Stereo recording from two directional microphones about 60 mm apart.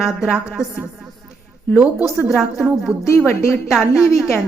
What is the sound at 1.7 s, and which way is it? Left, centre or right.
Speech, right.